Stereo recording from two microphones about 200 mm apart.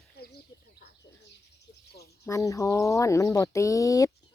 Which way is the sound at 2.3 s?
15° left (ahead or behind).